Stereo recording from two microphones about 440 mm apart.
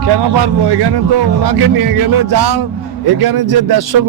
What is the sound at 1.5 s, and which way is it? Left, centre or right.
Speech, right.